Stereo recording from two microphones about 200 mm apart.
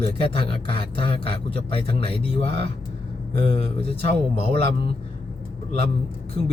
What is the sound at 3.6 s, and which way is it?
Speech, 30° left (ahead or behind).